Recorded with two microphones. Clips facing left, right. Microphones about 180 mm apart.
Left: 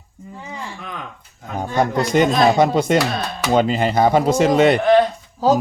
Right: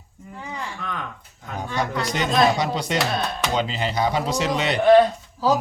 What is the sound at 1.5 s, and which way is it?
Speech, 45° left (ahead or behind).